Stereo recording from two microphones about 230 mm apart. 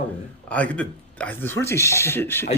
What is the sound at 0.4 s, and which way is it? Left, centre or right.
Speech, centre.